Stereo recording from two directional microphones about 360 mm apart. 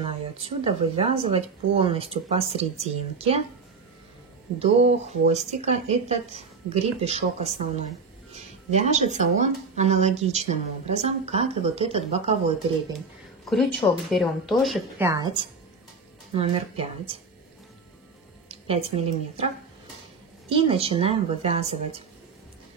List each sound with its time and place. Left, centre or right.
0.0 s speech: centre
4.6 s speech: centre
8.6 s speech: centre
13.5 s speech: centre
16.3 s speech: centre
18.5 s a woman's voice: centre